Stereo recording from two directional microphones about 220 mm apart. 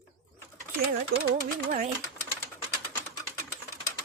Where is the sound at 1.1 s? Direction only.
45° right (ahead or behind).